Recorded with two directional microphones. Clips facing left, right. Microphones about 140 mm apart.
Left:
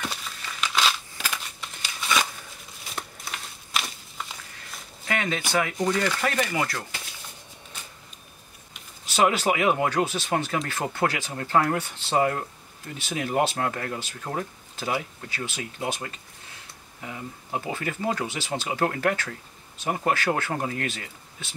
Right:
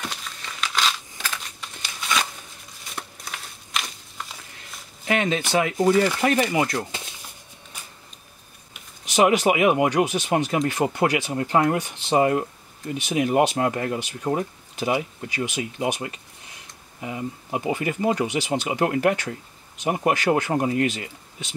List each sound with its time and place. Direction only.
0.1 s crumpling: 5° left (ahead or behind)
2.8 s a sound: 5° left (ahead or behind)
5.0 s speech: 20° right (ahead or behind)
9.0 s speech: 15° right (ahead or behind)